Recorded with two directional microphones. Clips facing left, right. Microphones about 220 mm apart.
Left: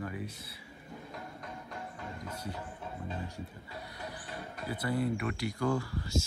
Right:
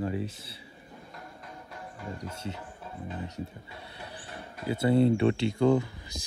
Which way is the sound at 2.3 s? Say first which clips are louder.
Right 2 dB; 25° right (ahead or behind).